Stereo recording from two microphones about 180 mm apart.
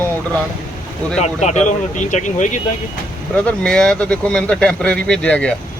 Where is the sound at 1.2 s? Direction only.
40° left (ahead or behind).